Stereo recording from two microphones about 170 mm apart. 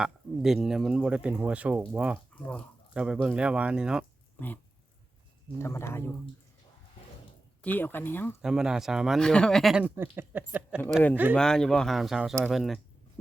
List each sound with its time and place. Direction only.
0.0 s speech: centre (ahead or behind)
2.1 s speech: 5° left (ahead or behind)
2.9 s speech: 5° right (ahead or behind)
4.4 s a sound: 10° left (ahead or behind)
5.5 s speech: 15° left (ahead or behind)
7.6 s speech: 10° left (ahead or behind)
8.4 s speech: 5° right (ahead or behind)
11.3 s speech: 5° left (ahead or behind)